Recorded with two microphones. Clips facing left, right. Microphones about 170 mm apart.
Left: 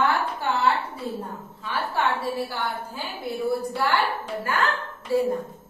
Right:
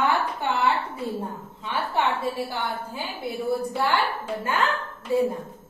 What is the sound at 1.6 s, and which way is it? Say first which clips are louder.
Speech: right 1 dB; 20° right (ahead or behind).